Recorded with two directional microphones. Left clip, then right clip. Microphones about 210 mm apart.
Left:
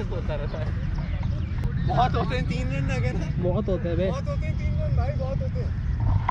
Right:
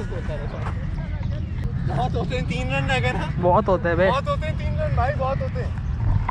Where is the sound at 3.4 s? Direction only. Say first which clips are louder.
Right 9 dB; 25° right (ahead or behind).